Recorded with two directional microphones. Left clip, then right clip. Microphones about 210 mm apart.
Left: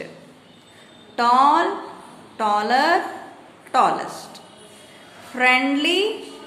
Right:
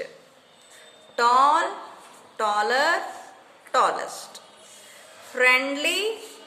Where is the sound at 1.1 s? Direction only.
30° right (ahead or behind).